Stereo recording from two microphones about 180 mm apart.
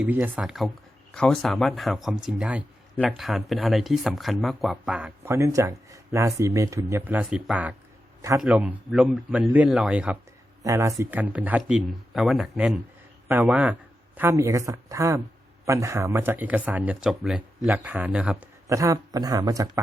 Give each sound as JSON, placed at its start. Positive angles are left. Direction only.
{"t": 0.0, "sound": "a man's voice", "side_deg": -10}